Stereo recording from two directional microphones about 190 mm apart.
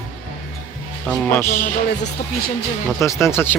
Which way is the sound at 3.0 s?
15° left (ahead or behind).